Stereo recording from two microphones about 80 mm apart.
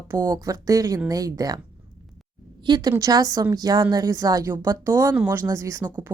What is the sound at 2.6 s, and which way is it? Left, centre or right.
Speech, right.